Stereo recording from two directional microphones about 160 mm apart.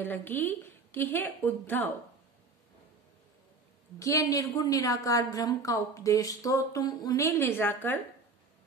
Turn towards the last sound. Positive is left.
turn(degrees=15)  # may be behind; listen again after turning